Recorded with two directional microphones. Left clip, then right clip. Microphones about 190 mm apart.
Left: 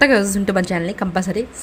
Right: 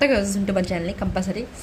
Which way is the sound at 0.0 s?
20° left (ahead or behind).